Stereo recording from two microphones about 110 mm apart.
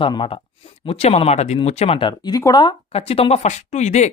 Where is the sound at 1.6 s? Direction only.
70° left (ahead or behind).